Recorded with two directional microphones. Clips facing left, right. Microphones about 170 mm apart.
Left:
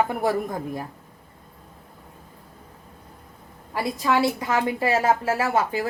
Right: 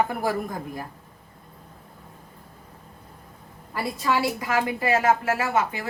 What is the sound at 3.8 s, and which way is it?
A woman's voice, 20° left (ahead or behind).